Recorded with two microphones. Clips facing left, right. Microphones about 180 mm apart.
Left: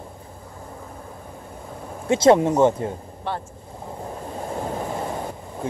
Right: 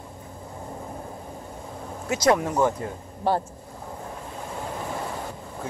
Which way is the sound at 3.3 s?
40° right (ahead or behind).